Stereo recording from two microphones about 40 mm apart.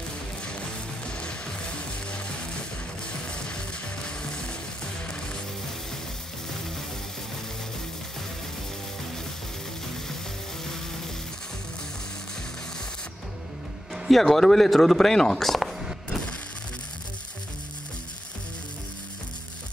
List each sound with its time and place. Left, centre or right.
1.0 s music: left
3.3 s music: left
14.0 s speech: centre